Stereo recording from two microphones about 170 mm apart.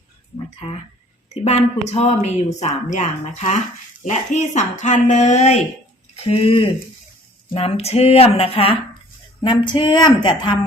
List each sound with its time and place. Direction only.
1.3 s a woman's voice: 40° left (ahead or behind)